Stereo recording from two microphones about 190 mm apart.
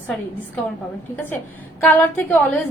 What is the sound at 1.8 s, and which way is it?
Speech, 10° left (ahead or behind).